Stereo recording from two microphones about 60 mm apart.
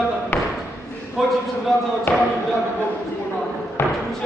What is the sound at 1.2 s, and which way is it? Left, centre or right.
Speech, centre.